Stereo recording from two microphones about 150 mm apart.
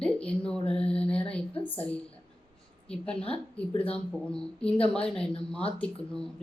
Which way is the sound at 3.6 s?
10° left (ahead or behind).